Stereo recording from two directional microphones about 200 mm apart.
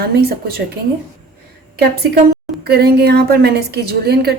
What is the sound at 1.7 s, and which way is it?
A woman's voice, 50° right (ahead or behind).